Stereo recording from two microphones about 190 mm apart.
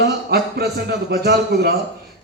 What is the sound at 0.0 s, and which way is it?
A man's voice, 60° right (ahead or behind).